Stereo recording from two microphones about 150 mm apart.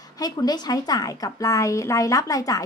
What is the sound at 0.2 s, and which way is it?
A woman's voice, 25° left (ahead or behind).